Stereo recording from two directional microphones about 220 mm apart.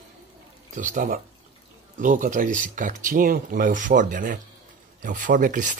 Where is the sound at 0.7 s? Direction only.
35° right (ahead or behind).